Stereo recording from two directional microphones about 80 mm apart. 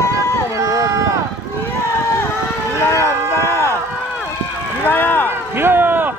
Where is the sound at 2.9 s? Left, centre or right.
Left.